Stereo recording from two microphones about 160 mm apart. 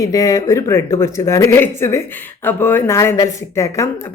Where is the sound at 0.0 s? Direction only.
20° left (ahead or behind).